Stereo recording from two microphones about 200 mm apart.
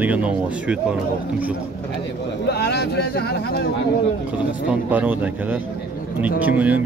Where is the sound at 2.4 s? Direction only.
55° left (ahead or behind).